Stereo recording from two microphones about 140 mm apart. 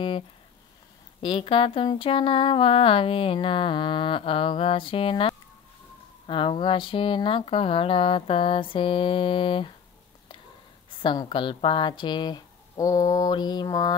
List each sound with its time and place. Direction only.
1.2 s speech: 40° left (ahead or behind)
10.9 s speech: 35° left (ahead or behind)